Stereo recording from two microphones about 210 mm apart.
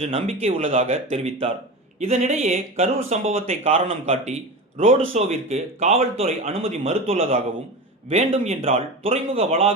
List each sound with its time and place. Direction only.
0.0 s speech: 30° right (ahead or behind)